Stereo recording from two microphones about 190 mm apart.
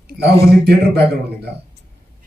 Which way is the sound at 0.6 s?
60° right (ahead or behind).